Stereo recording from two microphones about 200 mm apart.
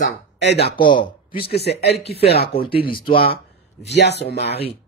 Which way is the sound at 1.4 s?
55° left (ahead or behind).